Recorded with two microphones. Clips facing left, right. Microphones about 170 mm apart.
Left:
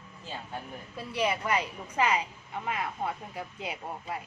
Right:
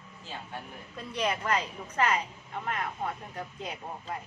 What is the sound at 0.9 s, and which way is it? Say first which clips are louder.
A woman's voice: left 1 dB; 5° left (ahead or behind).